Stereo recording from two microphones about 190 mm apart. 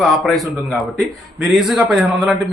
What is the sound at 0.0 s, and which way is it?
Speech, centre (ahead or behind).